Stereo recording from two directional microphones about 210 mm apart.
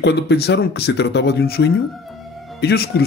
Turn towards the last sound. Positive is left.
turn(degrees=50)  # may be behind; listen again after turning